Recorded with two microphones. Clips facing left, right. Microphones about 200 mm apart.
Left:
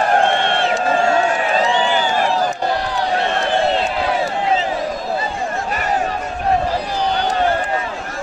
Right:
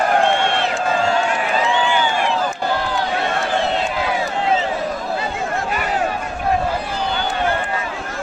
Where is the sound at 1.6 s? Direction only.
40° left (ahead or behind).